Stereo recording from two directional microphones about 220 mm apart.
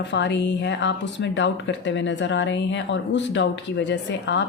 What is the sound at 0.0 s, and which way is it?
Speech, 55° left (ahead or behind).